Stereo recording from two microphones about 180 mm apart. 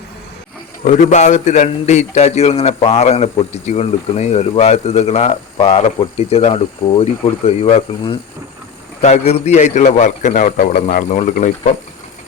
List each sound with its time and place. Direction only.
0.9 s a man's voice: 40° left (ahead or behind)
9.0 s a man's voice: 40° left (ahead or behind)